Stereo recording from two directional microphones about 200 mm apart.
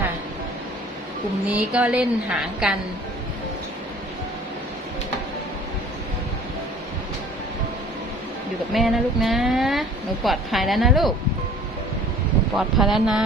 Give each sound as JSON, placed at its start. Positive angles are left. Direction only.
{"t": 1.5, "sound": "a woman's voice", "side_deg": -5}
{"t": 8.7, "sound": "a woman's voice", "side_deg": 0}
{"t": 12.5, "sound": "a woman's voice", "side_deg": 0}